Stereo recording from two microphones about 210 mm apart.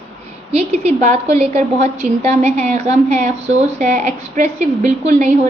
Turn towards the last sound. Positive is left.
turn(degrees=-35)  # may be behind; listen again after turning